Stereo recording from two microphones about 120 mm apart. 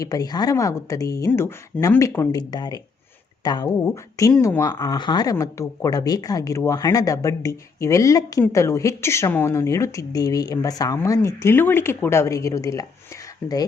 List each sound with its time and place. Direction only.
0.0 s speech: 30° left (ahead or behind)
3.8 s speech: 25° left (ahead or behind)
13.4 s speech: 15° left (ahead or behind)